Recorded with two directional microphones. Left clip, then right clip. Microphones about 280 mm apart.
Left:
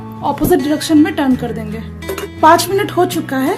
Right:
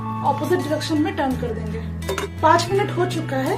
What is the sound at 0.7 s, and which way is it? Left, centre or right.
Speech, left.